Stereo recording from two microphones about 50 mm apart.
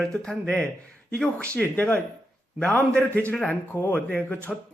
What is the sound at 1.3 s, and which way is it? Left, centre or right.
Speech, left.